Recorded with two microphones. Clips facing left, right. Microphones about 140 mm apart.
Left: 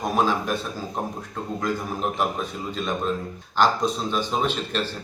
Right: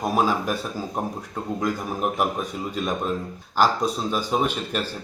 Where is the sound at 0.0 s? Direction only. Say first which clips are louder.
Right 1 dB; 10° right (ahead or behind).